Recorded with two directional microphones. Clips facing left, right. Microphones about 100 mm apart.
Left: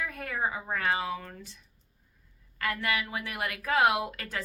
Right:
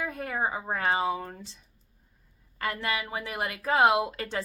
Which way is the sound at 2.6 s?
25° right (ahead or behind).